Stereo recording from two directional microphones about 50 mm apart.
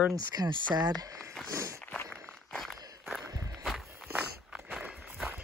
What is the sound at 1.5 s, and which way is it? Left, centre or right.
Walk, right.